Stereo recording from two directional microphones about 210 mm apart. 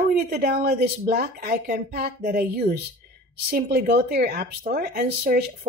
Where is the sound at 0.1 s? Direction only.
45° right (ahead or behind).